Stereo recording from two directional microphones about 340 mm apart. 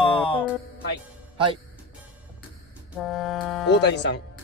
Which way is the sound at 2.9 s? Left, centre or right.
Centre.